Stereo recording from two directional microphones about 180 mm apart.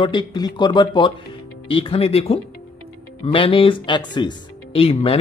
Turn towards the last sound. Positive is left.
turn(degrees=30)  # may be behind; listen again after turning